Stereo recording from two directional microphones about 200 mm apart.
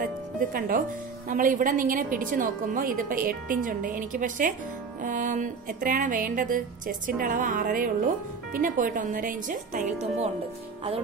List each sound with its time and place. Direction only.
0.0 s music: 45° right (ahead or behind)
1.3 s a woman's voice: 40° right (ahead or behind)
5.0 s music: 40° right (ahead or behind)
8.5 s a woman's voice: 45° right (ahead or behind)